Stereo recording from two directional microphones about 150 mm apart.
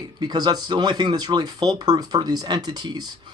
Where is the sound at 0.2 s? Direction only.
25° right (ahead or behind).